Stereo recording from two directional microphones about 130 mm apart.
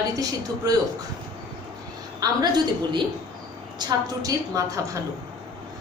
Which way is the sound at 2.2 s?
35° right (ahead or behind).